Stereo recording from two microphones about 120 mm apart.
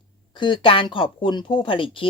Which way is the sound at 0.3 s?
45° left (ahead or behind).